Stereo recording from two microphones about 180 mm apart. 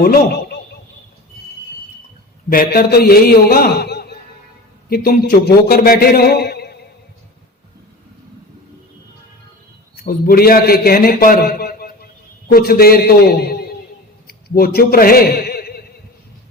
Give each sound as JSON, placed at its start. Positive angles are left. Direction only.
{"t": 0.0, "sound": "a man's voice", "side_deg": 60}
{"t": 2.5, "sound": "a man's voice", "side_deg": 55}
{"t": 9.9, "sound": "a man's voice", "side_deg": 55}